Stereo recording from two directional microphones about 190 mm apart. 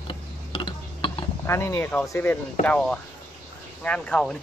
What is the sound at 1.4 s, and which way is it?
Speech, 15° left (ahead or behind).